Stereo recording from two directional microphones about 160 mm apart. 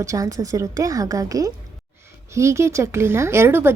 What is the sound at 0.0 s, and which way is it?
A woman's voice, 20° right (ahead or behind).